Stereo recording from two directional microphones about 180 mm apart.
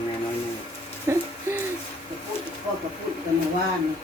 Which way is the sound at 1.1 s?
15° right (ahead or behind).